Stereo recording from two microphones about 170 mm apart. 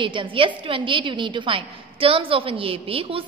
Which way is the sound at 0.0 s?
30° right (ahead or behind).